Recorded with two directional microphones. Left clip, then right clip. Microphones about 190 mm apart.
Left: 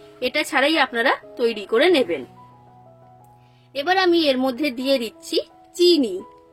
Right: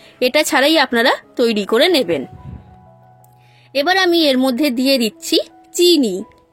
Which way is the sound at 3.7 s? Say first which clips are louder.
Right 4 dB; 45° right (ahead or behind).